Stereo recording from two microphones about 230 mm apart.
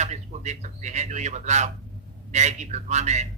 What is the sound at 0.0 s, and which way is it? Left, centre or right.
A man's voice, right.